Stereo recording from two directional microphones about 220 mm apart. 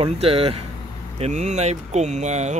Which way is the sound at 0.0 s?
25° right (ahead or behind).